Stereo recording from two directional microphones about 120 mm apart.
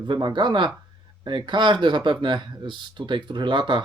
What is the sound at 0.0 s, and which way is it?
Speech, 40° right (ahead or behind).